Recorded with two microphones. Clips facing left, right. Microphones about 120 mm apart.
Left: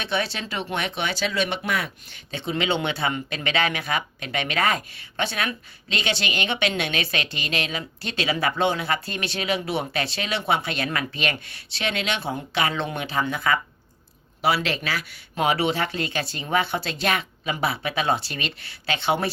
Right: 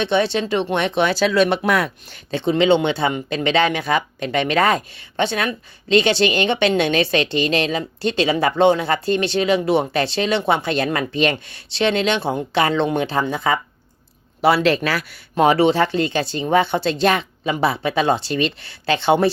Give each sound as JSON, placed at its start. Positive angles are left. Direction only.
{"t": 0.0, "sound": "a woman's voice", "side_deg": -25}
{"t": 2.5, "sound": "a woman's voice", "side_deg": -25}
{"t": 14.4, "sound": "a woman's voice", "side_deg": -45}